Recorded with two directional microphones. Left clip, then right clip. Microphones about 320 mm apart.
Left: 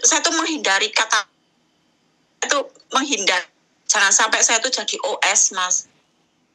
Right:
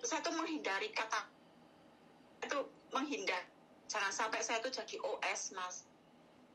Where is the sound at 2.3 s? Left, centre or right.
Left.